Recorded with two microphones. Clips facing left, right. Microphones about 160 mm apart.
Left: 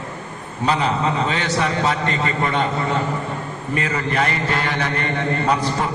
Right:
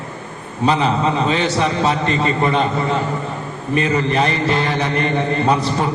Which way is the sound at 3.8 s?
25° right (ahead or behind).